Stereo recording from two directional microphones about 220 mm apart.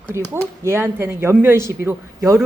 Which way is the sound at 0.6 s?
10° right (ahead or behind).